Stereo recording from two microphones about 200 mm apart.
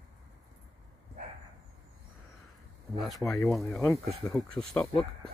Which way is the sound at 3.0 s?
Centre (ahead or behind).